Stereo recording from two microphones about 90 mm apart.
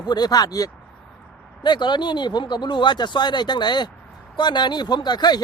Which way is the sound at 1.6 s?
55° left (ahead or behind).